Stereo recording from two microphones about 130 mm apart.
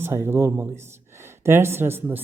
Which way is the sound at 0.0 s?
20° right (ahead or behind).